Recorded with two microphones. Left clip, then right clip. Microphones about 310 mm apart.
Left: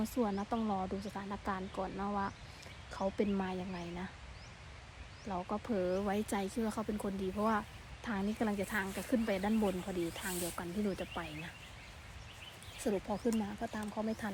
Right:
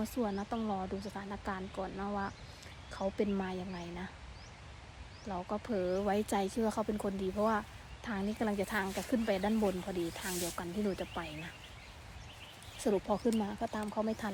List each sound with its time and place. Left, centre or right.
0.0 s speech: centre
5.3 s speech: centre
12.8 s speech: centre